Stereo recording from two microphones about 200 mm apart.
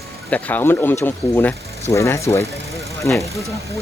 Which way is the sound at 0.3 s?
5° left (ahead or behind).